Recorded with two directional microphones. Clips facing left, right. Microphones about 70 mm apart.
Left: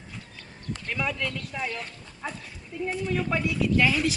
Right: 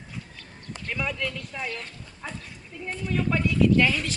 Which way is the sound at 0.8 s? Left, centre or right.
Centre.